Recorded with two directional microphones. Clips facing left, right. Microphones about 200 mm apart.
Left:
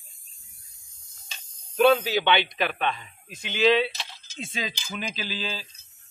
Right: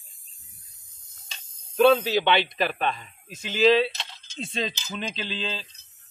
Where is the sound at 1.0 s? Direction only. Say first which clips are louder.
Even; 20° right (ahead or behind).